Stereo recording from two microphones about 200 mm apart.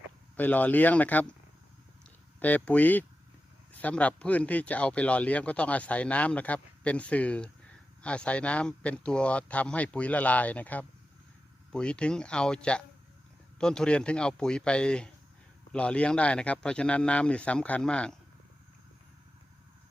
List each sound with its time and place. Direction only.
0.3 s speech: 10° left (ahead or behind)
2.4 s speech: 5° left (ahead or behind)